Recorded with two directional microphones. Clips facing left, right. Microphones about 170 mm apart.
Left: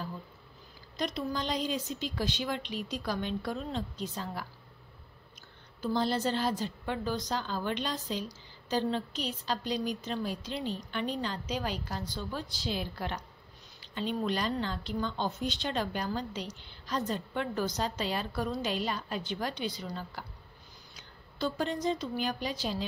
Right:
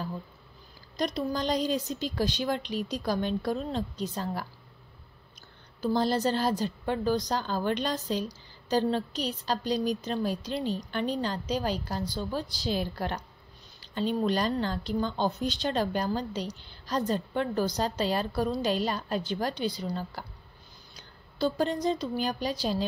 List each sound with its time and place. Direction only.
0.9 s speech: 40° right (ahead or behind)
5.8 s a woman's voice: 40° right (ahead or behind)